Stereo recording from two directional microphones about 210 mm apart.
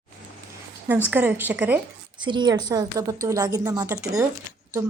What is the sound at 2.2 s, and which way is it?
A woman's voice, 20° right (ahead or behind).